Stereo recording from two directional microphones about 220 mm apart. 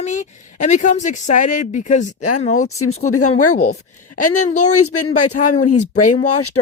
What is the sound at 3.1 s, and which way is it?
Speech, 90° left.